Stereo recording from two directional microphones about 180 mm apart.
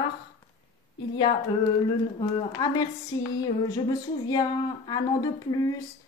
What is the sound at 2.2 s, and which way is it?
Speech, 25° left (ahead or behind).